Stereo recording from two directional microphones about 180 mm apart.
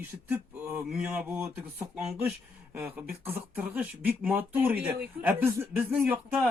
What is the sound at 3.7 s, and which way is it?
Speech, 10° right (ahead or behind).